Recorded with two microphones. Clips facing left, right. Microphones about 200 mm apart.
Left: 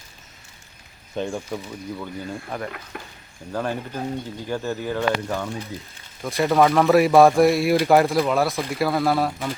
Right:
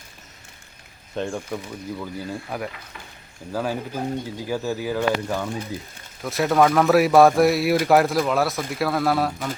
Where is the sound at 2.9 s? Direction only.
55° left (ahead or behind).